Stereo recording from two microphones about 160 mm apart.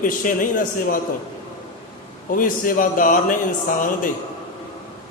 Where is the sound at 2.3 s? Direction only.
60° left (ahead or behind).